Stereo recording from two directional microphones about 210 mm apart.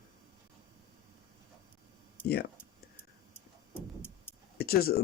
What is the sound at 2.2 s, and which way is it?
Speech, 50° left (ahead or behind).